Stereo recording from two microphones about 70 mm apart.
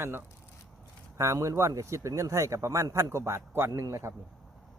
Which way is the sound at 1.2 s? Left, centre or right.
Right.